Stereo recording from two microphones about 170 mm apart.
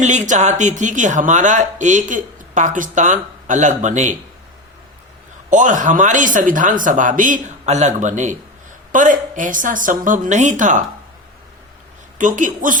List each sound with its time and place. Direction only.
0.0 s speech: 45° right (ahead or behind)
5.5 s speech: 50° right (ahead or behind)
12.1 s speech: 50° right (ahead or behind)